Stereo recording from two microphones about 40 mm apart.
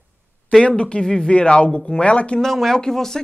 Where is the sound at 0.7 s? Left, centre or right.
Left.